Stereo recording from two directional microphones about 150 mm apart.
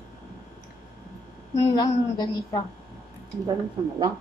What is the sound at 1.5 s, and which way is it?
A woman's voice, 20° left (ahead or behind).